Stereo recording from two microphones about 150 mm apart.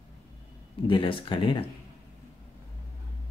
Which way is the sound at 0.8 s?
35° left (ahead or behind).